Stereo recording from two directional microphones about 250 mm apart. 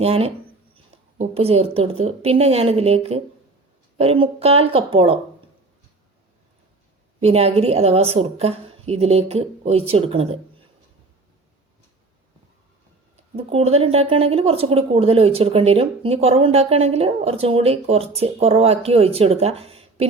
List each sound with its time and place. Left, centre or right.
0.0 s speech: right
7.2 s speech: right
13.3 s speech: right